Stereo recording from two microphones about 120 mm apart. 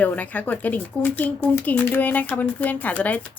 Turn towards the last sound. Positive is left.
turn(degrees=15)  # may be behind; listen again after turning